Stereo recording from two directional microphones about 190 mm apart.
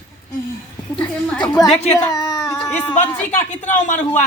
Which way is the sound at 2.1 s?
20° left (ahead or behind).